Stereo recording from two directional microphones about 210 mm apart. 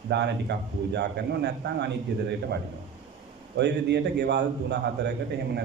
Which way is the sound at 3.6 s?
55° right (ahead or behind).